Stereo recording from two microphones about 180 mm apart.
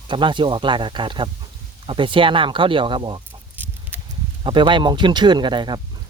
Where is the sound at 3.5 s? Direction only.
10° right (ahead or behind).